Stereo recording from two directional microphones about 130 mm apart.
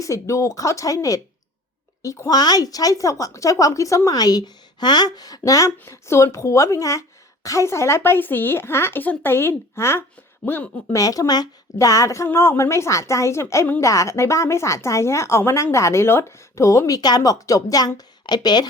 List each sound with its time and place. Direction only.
0.0 s a woman's voice: 25° left (ahead or behind)
11.0 s a woman's voice: 25° left (ahead or behind)